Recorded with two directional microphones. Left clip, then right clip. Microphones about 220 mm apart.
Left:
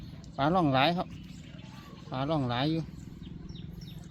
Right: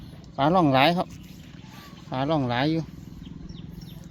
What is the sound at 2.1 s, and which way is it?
Speech, 30° right (ahead or behind).